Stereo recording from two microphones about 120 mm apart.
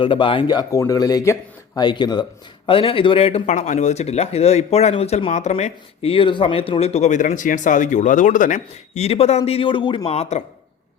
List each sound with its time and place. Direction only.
0.0 s speech: 45° left (ahead or behind)
3.4 s speech: 90° left; by 10.1 s 40° left (ahead or behind)
10.1 s speech: 65° left (ahead or behind)